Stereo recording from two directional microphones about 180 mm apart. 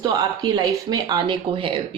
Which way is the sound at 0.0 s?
25° right (ahead or behind).